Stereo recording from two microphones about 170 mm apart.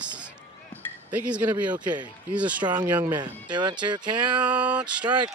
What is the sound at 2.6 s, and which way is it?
Speech, 25° right (ahead or behind).